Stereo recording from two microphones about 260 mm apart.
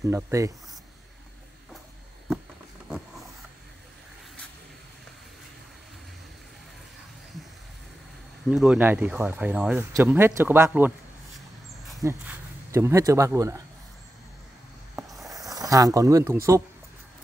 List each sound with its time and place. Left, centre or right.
0.0 s speech: centre
8.5 s speech: centre
12.0 s speech: centre
15.0 s a sound: centre
15.3 s speech: centre